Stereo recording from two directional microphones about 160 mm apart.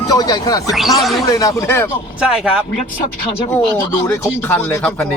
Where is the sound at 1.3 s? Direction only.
20° left (ahead or behind).